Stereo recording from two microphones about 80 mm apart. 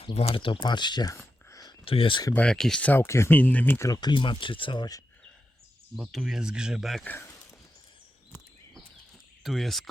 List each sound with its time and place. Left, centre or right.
0.3 s speech: left
2.0 s speech: left
2.3 s speech: centre
2.8 s speech: left
3.8 s speech: left
4.1 s speech: left
6.0 s speech: centre
7.0 s speech: left
9.4 s speech: centre